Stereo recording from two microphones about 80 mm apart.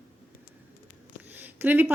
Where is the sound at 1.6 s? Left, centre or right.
Right.